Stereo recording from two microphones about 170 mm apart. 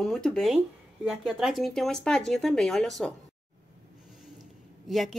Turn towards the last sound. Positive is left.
turn(degrees=0)  # may be behind; listen again after turning